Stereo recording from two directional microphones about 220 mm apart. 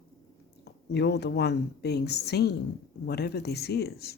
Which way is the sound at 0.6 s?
50° left (ahead or behind).